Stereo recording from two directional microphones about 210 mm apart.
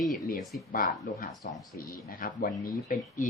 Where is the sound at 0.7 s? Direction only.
40° left (ahead or behind).